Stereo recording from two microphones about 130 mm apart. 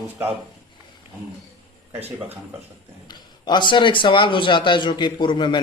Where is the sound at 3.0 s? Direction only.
35° left (ahead or behind).